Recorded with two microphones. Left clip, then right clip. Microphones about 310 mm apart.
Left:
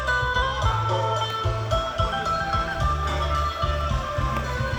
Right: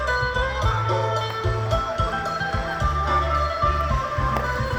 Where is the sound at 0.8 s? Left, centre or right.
Right.